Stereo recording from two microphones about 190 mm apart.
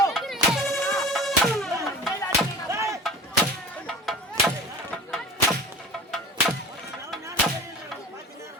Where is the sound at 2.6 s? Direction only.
15° right (ahead or behind).